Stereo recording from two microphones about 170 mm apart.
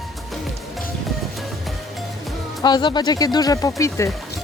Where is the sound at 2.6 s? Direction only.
25° left (ahead or behind).